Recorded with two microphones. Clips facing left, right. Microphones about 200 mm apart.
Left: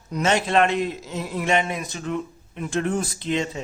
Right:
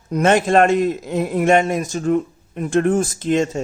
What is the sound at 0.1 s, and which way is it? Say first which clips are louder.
A man's voice: right 6 dB; 50° right (ahead or behind).